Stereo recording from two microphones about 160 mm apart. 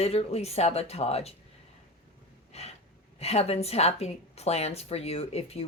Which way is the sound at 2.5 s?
40° left (ahead or behind).